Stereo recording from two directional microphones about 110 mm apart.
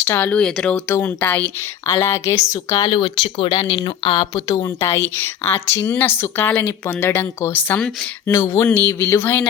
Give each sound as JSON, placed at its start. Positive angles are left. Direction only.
{"t": 0.0, "sound": "speech", "side_deg": 20}
{"t": 0.9, "sound": "speech", "side_deg": 20}
{"t": 2.0, "sound": "a woman's voice", "side_deg": 25}
{"t": 2.8, "sound": "speech", "side_deg": 50}
{"t": 4.8, "sound": "a woman's voice", "side_deg": 25}